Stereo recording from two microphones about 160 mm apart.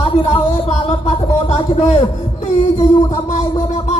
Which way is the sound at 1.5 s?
40° left (ahead or behind).